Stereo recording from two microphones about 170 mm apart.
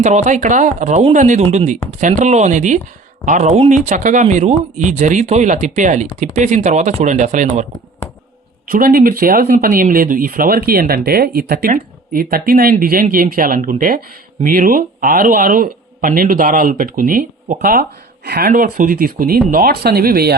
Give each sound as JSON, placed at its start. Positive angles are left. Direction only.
{"t": 0.0, "sound": "speech", "side_deg": -45}
{"t": 8.6, "sound": "speech", "side_deg": -55}